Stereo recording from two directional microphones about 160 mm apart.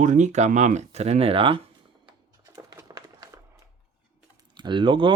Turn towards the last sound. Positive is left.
turn(degrees=-30)  # may be behind; listen again after turning